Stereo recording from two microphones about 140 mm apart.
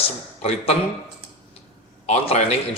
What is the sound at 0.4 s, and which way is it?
Speech, 45° left (ahead or behind).